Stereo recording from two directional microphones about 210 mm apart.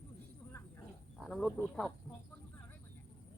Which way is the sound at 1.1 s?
5° left (ahead or behind).